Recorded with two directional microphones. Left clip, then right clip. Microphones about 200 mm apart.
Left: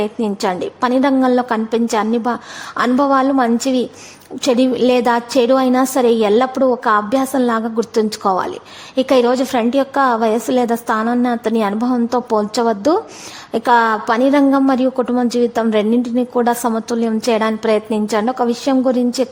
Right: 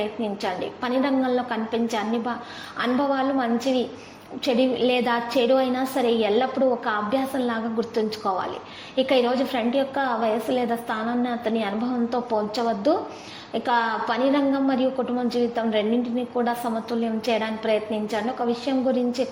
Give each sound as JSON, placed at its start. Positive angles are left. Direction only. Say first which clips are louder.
{"t": 0.0, "sound": "a woman's voice", "louder": "left 8 dB", "side_deg": 45}